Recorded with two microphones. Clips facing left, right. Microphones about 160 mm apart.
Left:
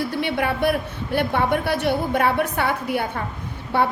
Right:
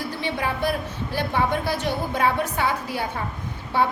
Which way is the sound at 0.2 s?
60° left (ahead or behind).